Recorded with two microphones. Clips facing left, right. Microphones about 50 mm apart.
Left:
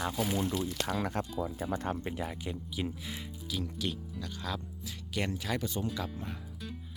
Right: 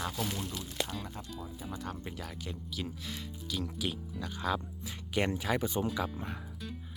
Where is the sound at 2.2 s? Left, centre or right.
Centre.